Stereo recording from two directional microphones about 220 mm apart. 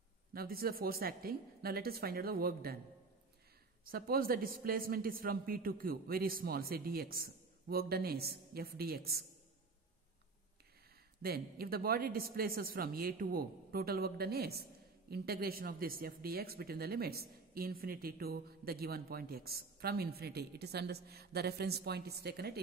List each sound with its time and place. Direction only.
0.3 s speech: 45° right (ahead or behind)
3.8 s speech: 40° right (ahead or behind)
11.2 s speech: 45° right (ahead or behind)